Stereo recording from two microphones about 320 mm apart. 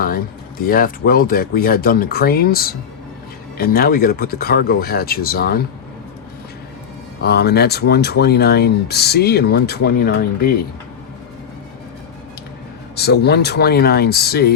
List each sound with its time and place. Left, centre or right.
0.6 s speech: left
7.2 s speech: left
13.0 s speech: left